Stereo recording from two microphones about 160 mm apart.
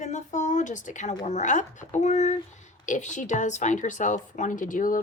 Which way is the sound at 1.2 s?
45° left (ahead or behind).